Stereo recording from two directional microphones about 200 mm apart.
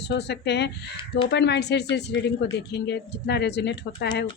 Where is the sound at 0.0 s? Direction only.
55° left (ahead or behind).